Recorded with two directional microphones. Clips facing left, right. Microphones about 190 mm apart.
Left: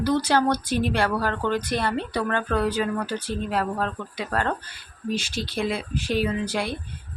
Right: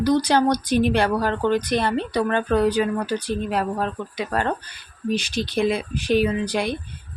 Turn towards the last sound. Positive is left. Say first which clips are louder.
# right 3 dB
turn(degrees=-15)  # may be behind; listen again after turning